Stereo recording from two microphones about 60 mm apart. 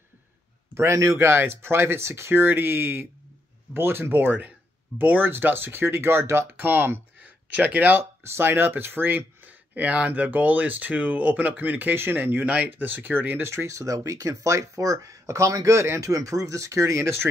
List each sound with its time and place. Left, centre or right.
0.7 s speech: right
6.7 s speech: right
8.0 s speech: right
16.0 s speech: right